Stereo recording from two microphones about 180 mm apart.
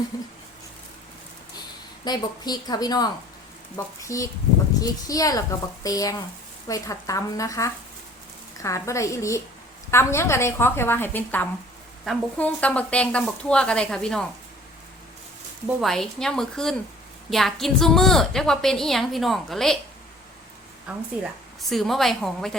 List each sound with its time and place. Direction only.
0.1 s a woman's voice: 20° left (ahead or behind)
2.0 s a woman's voice: 20° left (ahead or behind); by 14.3 s 5° left (ahead or behind)
15.8 s a woman's voice: centre (ahead or behind)
21.7 s a woman's voice: centre (ahead or behind)